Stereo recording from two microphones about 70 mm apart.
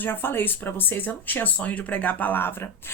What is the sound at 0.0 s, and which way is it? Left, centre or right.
Speech, left.